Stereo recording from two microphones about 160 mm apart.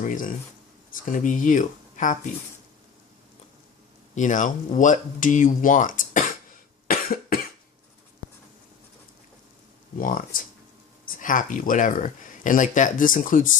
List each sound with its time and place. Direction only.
0.0 s speech: 55° left (ahead or behind)
4.1 s speech: 50° left (ahead or behind)
6.8 s cough: 65° left (ahead or behind)
10.0 s speech: 60° left (ahead or behind)